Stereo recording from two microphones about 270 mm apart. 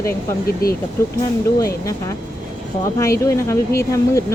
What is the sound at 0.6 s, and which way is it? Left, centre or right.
Speech, left.